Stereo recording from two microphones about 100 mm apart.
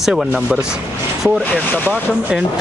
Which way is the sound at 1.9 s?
10° right (ahead or behind).